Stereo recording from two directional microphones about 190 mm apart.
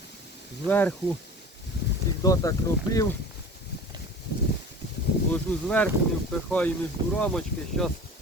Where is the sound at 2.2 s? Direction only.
15° left (ahead or behind).